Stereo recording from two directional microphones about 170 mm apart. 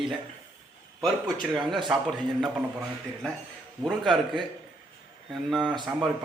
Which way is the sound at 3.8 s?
Centre (ahead or behind).